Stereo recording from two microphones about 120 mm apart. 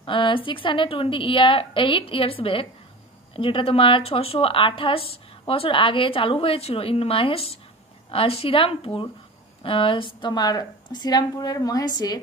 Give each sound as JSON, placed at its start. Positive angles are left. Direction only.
{"t": 0.0, "sound": "a woman's voice", "side_deg": 45}